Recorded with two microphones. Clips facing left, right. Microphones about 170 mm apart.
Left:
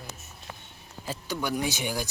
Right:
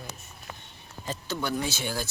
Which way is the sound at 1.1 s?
10° left (ahead or behind).